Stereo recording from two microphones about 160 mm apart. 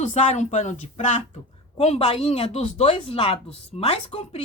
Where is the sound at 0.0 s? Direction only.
45° left (ahead or behind).